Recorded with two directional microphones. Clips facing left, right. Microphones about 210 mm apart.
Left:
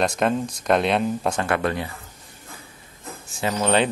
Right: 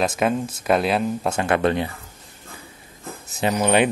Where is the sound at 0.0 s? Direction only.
5° right (ahead or behind).